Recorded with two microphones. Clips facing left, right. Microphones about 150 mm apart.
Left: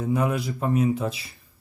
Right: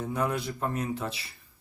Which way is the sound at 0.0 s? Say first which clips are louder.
Left 5 dB; 10° left (ahead or behind).